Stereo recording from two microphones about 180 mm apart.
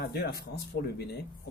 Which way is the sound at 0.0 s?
60° left (ahead or behind).